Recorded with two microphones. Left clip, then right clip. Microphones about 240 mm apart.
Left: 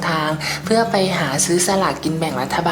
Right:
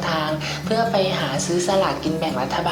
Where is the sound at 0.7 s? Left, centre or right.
Left.